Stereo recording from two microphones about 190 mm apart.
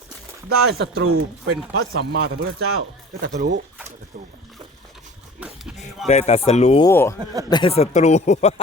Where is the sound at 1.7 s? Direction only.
55° right (ahead or behind).